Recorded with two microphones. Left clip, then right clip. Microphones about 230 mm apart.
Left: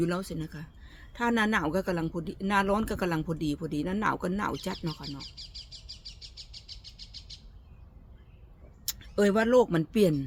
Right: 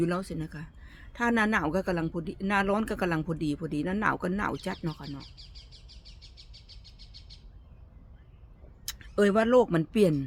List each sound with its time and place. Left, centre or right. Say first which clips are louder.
0.0 s speech: right 1 dB; centre
5.2 s bird: left 6 dB; left
8.9 s speech: right 1 dB; centre